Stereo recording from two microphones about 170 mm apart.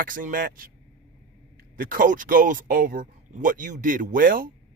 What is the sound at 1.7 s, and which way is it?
Speech, 55° right (ahead or behind).